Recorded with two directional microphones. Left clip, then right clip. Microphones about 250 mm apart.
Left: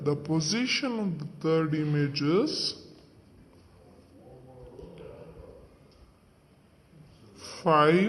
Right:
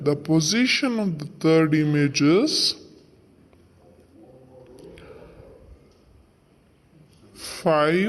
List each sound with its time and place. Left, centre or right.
0.0 s a man's voice: centre
7.3 s speech: centre